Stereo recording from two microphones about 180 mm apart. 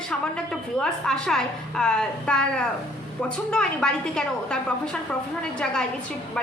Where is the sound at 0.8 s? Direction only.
5° left (ahead or behind).